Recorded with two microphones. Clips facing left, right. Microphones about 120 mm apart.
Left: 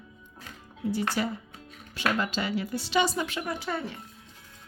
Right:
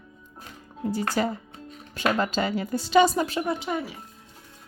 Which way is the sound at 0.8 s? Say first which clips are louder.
Right 3 dB; 45° right (ahead or behind).